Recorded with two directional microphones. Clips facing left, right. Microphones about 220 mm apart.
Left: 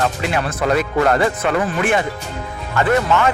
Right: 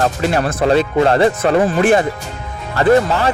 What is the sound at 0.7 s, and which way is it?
Speech, 30° right (ahead or behind).